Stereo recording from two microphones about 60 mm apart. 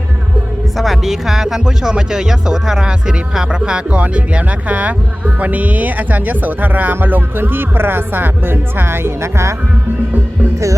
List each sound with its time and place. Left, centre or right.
0.8 s speech: centre; by 9.6 s right